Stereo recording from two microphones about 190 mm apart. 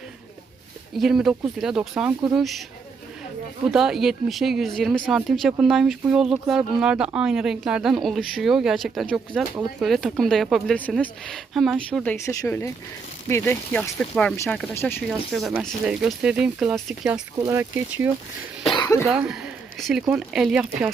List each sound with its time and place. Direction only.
0.9 s speech: centre (ahead or behind)
3.7 s speech: centre (ahead or behind)
15.0 s speech: centre (ahead or behind)
17.4 s speech: 15° right (ahead or behind)
18.7 s cough: 20° left (ahead or behind)
19.0 s speech: 5° right (ahead or behind)